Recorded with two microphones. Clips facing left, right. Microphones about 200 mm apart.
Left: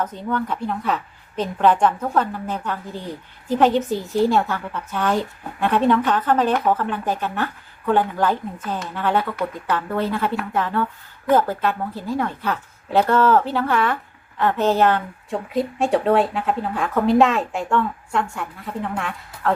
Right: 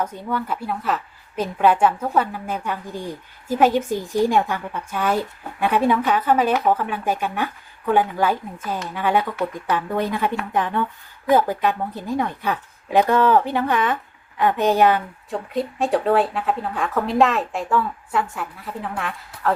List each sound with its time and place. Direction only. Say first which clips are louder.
0.0 s a woman's voice: left 1 dB; 10° right (ahead or behind)
15.3 s speech: left 2 dB; centre (ahead or behind)